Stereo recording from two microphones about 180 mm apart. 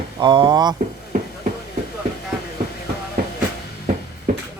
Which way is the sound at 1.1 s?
45° right (ahead or behind).